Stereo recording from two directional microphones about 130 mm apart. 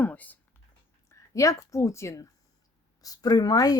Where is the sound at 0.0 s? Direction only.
15° left (ahead or behind).